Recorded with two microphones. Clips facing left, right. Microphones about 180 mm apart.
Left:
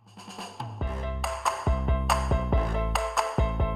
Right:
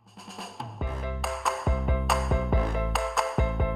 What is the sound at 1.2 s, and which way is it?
Music, centre (ahead or behind).